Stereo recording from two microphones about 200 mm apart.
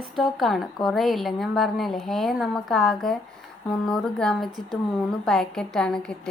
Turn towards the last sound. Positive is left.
turn(degrees=5)  # may be behind; listen again after turning